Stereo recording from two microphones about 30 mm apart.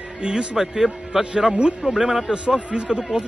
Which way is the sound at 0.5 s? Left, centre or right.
Centre.